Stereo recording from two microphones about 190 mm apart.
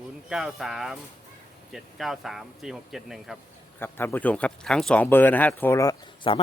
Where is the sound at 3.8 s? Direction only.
10° left (ahead or behind).